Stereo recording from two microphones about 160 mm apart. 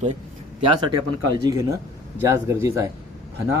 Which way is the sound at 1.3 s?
25° right (ahead or behind).